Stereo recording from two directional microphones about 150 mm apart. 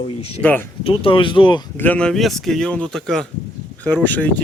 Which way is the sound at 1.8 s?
10° left (ahead or behind).